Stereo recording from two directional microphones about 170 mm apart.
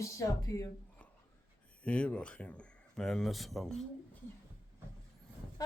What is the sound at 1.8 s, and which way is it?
Speech, 5° left (ahead or behind).